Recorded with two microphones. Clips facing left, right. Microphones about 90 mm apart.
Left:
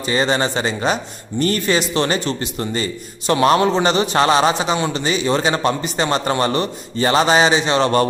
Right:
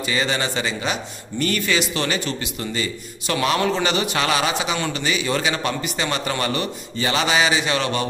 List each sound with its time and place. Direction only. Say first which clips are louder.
0.0 s a man's voice: left 5 dB; 35° left (ahead or behind)